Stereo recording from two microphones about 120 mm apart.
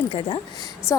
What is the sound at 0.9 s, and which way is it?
Speech, 20° left (ahead or behind).